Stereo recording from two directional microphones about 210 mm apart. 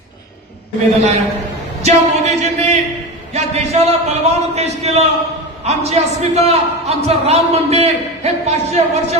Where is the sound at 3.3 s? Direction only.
30° right (ahead or behind).